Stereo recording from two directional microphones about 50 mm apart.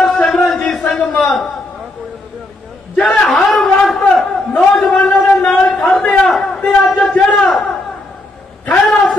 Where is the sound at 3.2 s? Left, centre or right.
Centre.